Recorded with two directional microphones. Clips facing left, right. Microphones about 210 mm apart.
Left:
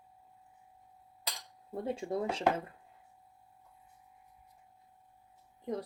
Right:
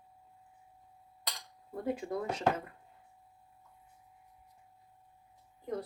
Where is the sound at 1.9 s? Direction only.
25° left (ahead or behind).